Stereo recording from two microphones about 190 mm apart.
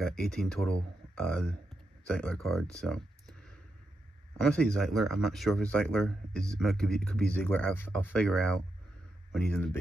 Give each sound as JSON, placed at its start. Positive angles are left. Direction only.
{"t": 0.0, "sound": "speech", "side_deg": 5}